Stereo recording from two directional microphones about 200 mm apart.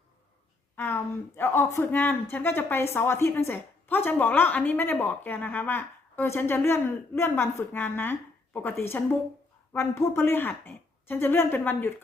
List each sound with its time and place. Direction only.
0.8 s a woman's voice: 10° left (ahead or behind)